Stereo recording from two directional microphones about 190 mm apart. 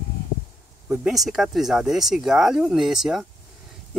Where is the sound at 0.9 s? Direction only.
Centre (ahead or behind).